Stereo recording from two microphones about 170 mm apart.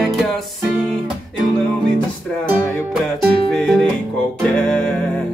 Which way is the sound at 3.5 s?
Centre (ahead or behind).